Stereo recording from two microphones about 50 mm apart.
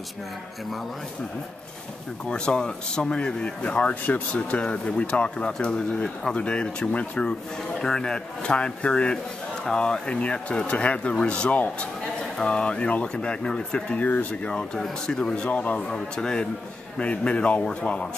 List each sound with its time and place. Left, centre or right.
2.2 s speech: centre
7.8 s speech: centre
13.9 s speech: left
15.5 s speech: left
15.9 s speech: centre